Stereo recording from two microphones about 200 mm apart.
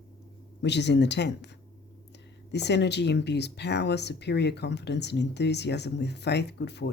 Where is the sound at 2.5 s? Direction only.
60° left (ahead or behind).